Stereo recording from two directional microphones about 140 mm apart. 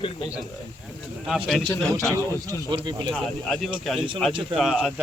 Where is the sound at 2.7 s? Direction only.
35° right (ahead or behind).